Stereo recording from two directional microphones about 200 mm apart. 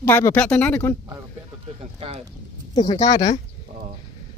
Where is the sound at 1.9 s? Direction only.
30° right (ahead or behind).